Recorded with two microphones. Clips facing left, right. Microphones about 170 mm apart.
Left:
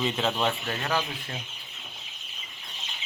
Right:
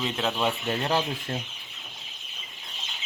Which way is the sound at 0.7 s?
25° right (ahead or behind).